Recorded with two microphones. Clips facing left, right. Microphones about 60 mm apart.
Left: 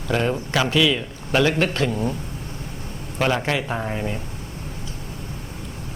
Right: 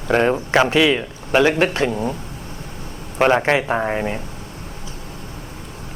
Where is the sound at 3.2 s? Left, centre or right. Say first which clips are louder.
Right 6 dB; right.